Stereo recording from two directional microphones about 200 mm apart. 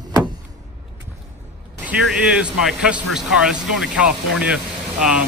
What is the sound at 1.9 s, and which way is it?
Speech, 5° right (ahead or behind).